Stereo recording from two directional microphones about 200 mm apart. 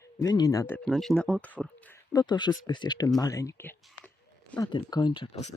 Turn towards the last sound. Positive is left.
turn(degrees=30)  # may be behind; listen again after turning